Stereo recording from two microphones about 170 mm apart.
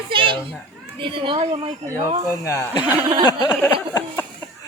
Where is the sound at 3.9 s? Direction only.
20° left (ahead or behind).